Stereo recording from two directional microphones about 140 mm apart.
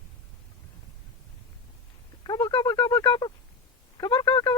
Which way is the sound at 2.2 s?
30° left (ahead or behind).